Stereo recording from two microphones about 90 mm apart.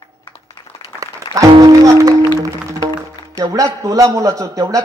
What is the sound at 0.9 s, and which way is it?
Music, 40° right (ahead or behind).